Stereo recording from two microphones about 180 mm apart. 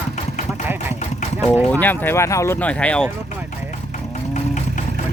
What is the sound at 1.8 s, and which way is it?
Speech, 10° left (ahead or behind).